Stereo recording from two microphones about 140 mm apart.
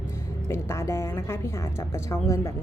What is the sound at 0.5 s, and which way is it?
A woman's voice, 20° left (ahead or behind).